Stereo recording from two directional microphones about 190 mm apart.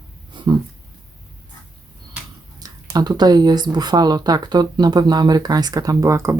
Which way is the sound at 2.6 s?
20° right (ahead or behind).